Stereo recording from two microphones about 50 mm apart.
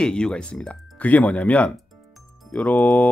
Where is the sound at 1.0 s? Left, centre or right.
Left.